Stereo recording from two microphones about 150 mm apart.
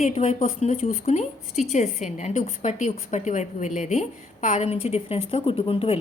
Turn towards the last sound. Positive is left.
turn(degrees=40)  # may be behind; listen again after turning